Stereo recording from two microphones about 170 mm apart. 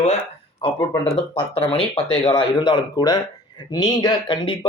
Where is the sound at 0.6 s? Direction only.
30° left (ahead or behind).